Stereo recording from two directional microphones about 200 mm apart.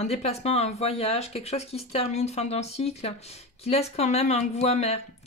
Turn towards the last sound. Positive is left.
turn(degrees=30)  # may be behind; listen again after turning